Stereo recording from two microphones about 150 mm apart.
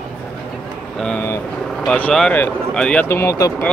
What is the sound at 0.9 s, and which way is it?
Speech, 5° left (ahead or behind).